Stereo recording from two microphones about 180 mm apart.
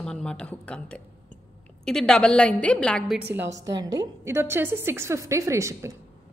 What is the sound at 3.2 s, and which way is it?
A woman's voice, 10° right (ahead or behind).